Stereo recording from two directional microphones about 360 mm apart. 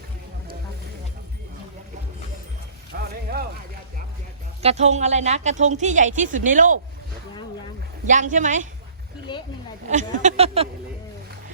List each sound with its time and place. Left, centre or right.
3.0 s a sound: right
4.6 s a woman's voice: centre
8.0 s a woman's voice: centre
9.9 s speech: centre